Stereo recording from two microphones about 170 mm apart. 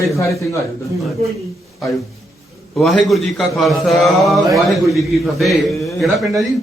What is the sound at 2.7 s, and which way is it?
A man's voice, centre (ahead or behind).